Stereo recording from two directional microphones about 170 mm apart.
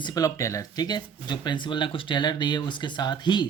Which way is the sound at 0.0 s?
20° left (ahead or behind).